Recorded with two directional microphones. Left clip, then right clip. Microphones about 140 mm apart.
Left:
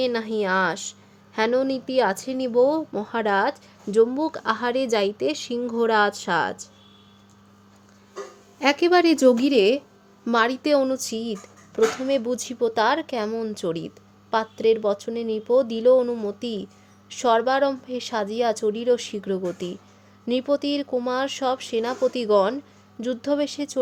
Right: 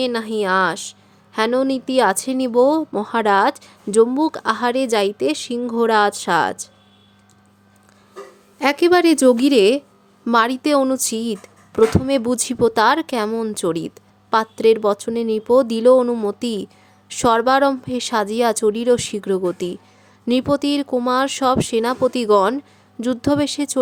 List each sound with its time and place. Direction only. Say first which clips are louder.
0.0 s a woman's voice: right 3 dB; 25° right (ahead or behind)
8.5 s a woman's voice: right 4 dB; 25° right (ahead or behind)